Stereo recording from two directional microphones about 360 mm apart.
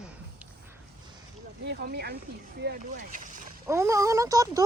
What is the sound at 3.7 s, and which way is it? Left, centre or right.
Speech, centre.